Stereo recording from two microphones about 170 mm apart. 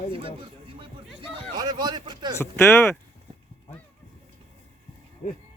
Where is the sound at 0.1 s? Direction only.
30° right (ahead or behind).